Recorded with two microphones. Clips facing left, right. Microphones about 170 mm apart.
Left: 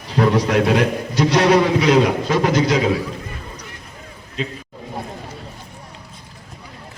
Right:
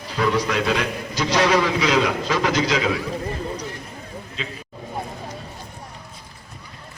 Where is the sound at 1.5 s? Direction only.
45° left (ahead or behind).